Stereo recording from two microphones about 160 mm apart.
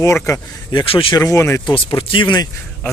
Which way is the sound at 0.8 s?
35° left (ahead or behind).